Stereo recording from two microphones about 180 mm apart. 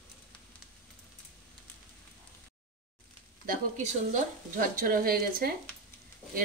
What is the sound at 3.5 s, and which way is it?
Speech, 45° right (ahead or behind).